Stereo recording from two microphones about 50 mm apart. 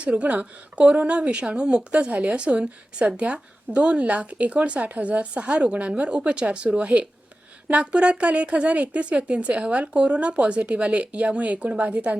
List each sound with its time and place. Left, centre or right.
0.0 s a woman's voice: right